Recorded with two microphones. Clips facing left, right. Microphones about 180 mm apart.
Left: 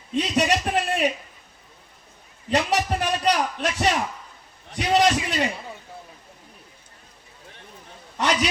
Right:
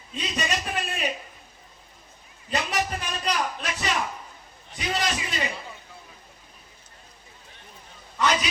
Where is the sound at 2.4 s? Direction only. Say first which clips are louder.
Left 5 dB; 90° left.